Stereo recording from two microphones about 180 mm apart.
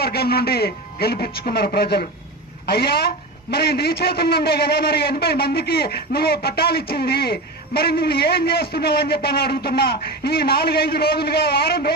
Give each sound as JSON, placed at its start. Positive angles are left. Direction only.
{"t": 0.0, "sound": "a man's voice", "side_deg": 60}